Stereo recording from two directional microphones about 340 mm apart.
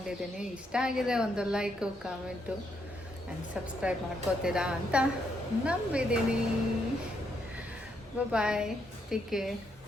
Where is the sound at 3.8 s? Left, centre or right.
Centre.